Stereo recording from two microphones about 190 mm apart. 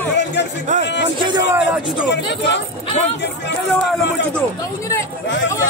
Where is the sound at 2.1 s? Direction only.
65° left (ahead or behind).